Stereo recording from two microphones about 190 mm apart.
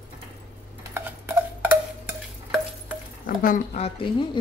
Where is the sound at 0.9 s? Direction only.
10° right (ahead or behind).